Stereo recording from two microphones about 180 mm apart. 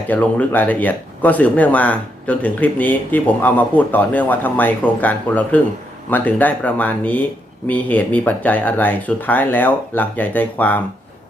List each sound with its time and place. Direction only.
0.1 s speech: 10° left (ahead or behind)